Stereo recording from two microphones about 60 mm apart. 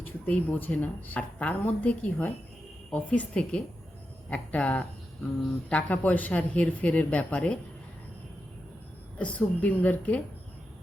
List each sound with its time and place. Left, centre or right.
0.0 s speech: left
9.1 s speech: left